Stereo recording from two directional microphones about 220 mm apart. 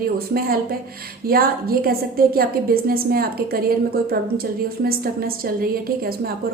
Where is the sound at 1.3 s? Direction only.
45° right (ahead or behind).